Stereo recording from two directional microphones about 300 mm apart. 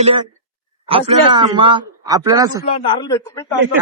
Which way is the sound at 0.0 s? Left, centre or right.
Centre.